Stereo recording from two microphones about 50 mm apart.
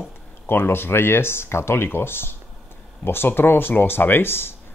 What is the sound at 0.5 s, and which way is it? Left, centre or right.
Speech, left.